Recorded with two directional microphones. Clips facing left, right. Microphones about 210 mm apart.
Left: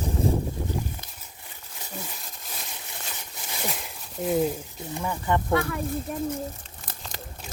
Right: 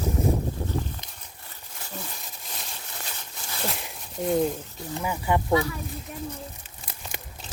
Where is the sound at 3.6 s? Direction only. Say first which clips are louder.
Right 1 dB; centre (ahead or behind).